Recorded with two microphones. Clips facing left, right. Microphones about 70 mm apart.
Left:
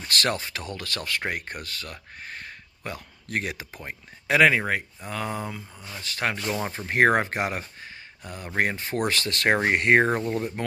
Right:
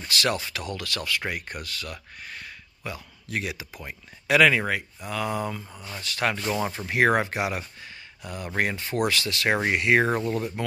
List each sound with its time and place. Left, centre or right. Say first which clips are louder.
0.1 s speech: even; left
6.3 s speech: right 1 dB; centre
6.9 s speech: left 2 dB; left
10.0 s speech: even; left